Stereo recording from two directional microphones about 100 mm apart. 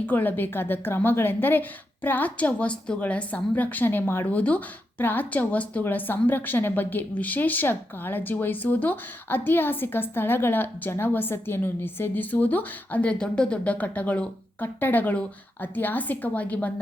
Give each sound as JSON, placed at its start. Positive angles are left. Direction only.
{"t": 0.0, "sound": "a woman's voice", "side_deg": 15}
{"t": 4.3, "sound": "a woman's voice", "side_deg": 15}